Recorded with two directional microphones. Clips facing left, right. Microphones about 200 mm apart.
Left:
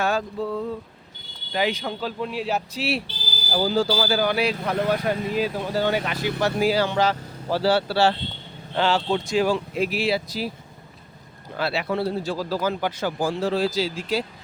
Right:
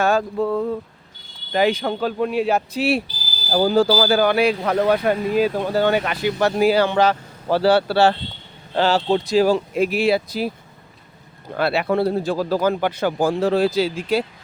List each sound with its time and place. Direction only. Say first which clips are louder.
0.0 s speech: right 5 dB; 50° right (ahead or behind)
8.7 s speech: right 4 dB; 40° right (ahead or behind); by 10.5 s 55° right (ahead or behind)
11.5 s speech: right 6 dB; 55° right (ahead or behind)